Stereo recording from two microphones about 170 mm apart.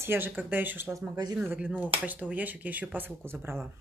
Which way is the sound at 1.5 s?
10° right (ahead or behind).